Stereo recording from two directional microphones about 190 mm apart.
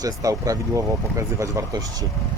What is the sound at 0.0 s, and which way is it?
Speech, 20° right (ahead or behind).